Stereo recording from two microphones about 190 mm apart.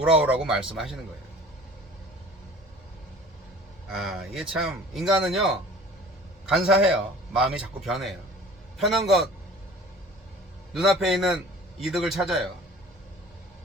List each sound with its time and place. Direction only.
0.0 s speech: 5° right (ahead or behind)
3.9 s a man's voice: centre (ahead or behind)
10.8 s speech: centre (ahead or behind)